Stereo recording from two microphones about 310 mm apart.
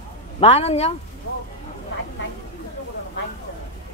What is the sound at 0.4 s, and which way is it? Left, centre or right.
Speech, centre.